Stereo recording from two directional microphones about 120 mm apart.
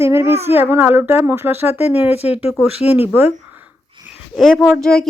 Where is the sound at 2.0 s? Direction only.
60° left (ahead or behind).